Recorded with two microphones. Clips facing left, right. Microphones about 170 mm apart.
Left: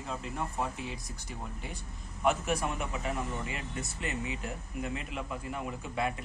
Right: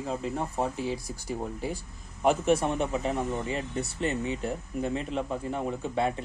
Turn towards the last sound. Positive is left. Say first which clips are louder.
# right 6 dB
turn(degrees=-30)  # may be behind; listen again after turning